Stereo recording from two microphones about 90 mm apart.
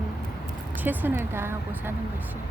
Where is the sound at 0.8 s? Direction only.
20° right (ahead or behind).